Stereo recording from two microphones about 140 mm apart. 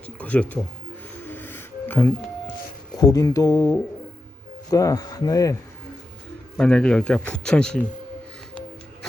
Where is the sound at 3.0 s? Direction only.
25° left (ahead or behind).